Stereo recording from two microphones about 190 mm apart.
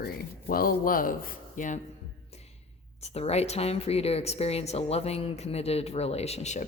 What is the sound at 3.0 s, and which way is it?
Speech, 35° left (ahead or behind).